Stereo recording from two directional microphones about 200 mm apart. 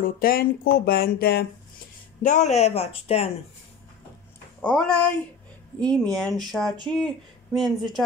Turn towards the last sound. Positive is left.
turn(degrees=0)  # may be behind; listen again after turning